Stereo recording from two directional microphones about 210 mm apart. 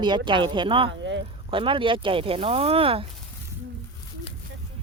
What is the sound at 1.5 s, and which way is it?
Speech, 25° right (ahead or behind).